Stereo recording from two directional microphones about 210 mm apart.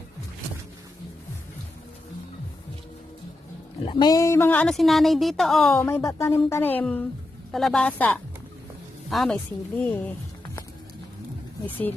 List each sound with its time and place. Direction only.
3.8 s a woman's voice: 20° left (ahead or behind); by 5.7 s centre (ahead or behind)
5.7 s a woman's voice: 10° left (ahead or behind)